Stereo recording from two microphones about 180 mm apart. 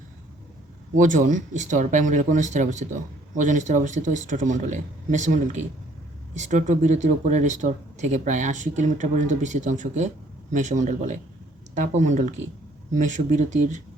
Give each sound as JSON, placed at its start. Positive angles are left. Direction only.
{"t": 0.9, "sound": "speech", "side_deg": -45}